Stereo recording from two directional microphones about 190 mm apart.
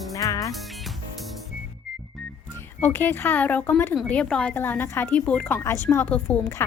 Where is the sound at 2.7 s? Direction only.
10° left (ahead or behind).